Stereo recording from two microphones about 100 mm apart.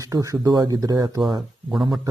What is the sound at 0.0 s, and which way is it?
Speech, 35° right (ahead or behind).